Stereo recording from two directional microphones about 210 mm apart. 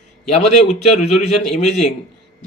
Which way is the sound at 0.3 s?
30° left (ahead or behind).